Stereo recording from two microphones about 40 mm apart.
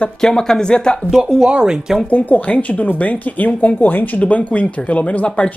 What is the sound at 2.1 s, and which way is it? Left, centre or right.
Speech, left.